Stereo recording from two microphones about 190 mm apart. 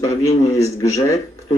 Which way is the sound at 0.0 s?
15° left (ahead or behind).